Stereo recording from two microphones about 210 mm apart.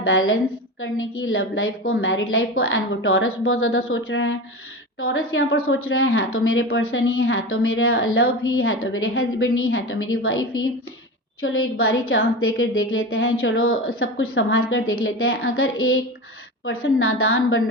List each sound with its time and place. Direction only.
0.0 s a woman's voice: 75° left (ahead or behind)
5.6 s a woman's voice: 80° left